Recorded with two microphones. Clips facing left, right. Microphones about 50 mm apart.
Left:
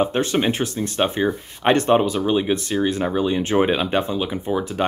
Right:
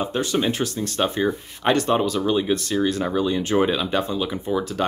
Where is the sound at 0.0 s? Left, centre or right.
Left.